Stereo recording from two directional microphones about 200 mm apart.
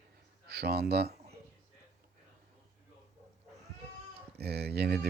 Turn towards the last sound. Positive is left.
turn(degrees=-55)  # may be behind; listen again after turning